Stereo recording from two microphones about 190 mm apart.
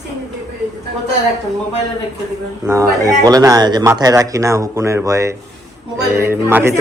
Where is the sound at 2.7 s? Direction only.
15° right (ahead or behind).